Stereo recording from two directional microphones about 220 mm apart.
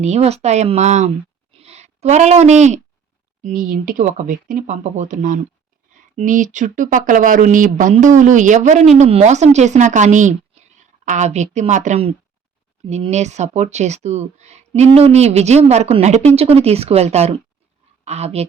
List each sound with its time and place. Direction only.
0.0 s speech: 30° right (ahead or behind)